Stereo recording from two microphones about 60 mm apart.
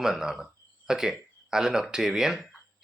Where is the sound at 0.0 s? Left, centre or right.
Centre.